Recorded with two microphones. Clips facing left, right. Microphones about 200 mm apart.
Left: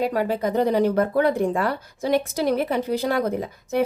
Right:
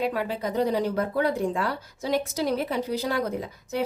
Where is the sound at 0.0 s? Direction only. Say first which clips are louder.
Left 5 dB; 40° left (ahead or behind).